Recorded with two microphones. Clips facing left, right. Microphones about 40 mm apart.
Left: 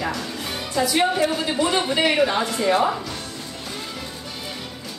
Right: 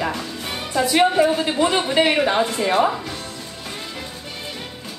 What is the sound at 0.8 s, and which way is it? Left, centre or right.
A woman's voice, right.